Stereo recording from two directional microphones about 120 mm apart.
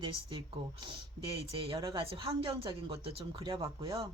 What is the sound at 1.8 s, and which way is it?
Speech, 35° right (ahead or behind).